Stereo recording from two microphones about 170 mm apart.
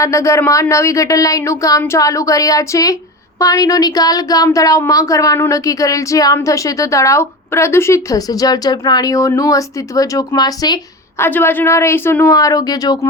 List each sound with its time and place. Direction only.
0.0 s speech: 15° left (ahead or behind)
11.2 s a woman's voice: 15° left (ahead or behind)